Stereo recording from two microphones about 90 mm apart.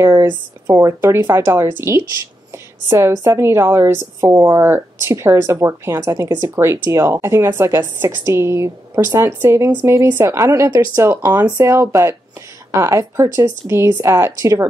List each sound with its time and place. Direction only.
0.0 s speech: 25° right (ahead or behind)
6.2 s speech: 40° right (ahead or behind)
6.6 s speech: 30° right (ahead or behind)
10.5 s speech: 45° right (ahead or behind)
11.0 s speech: 30° right (ahead or behind)